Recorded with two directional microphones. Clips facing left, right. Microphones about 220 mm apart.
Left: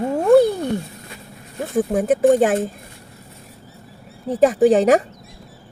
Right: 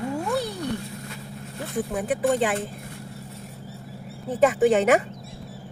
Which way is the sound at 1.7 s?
45° left (ahead or behind).